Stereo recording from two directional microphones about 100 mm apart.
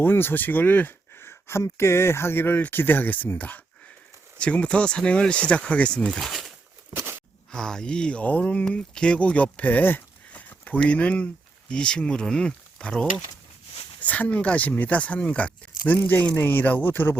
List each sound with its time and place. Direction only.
0.0 s speech: 20° left (ahead or behind)
6.1 s speech: centre (ahead or behind)
6.9 s a sound: 25° right (ahead or behind)
7.5 s speech: 5° left (ahead or behind)